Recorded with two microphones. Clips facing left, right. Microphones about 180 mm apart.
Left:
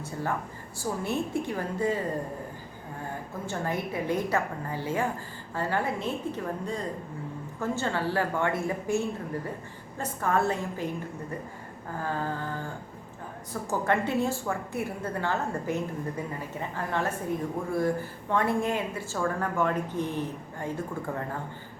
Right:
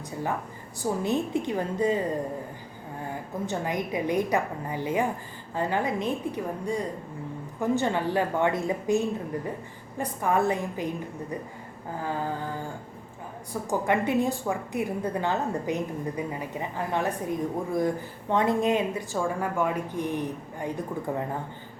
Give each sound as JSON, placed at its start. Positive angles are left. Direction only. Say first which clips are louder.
{"t": 0.0, "sound": "a woman's voice", "louder": "right 1 dB", "side_deg": -15}
{"t": 3.4, "sound": "a woman's voice", "louder": "right 2 dB", "side_deg": -15}
{"t": 12.0, "sound": "a woman's voice", "louder": "right 1 dB", "side_deg": -15}